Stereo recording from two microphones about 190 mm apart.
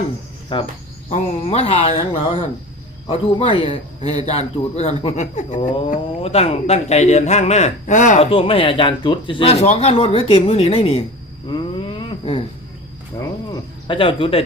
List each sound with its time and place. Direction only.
0.5 s a man's voice: 25° left (ahead or behind)
8.3 s speech: 30° left (ahead or behind)
11.4 s a sound: 25° left (ahead or behind)